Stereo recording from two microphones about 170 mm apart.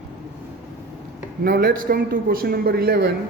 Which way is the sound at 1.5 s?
60° right (ahead or behind).